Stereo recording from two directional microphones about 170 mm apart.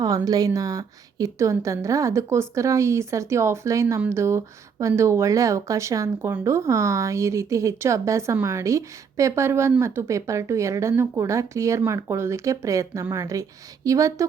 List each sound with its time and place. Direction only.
0.3 s a woman's voice: 20° right (ahead or behind)